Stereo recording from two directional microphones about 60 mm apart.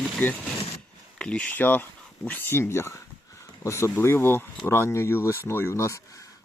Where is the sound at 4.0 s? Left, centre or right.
Left.